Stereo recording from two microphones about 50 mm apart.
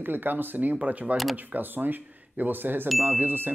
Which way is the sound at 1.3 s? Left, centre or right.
Right.